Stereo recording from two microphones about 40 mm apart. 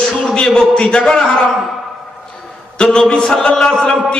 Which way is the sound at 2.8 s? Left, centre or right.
Left.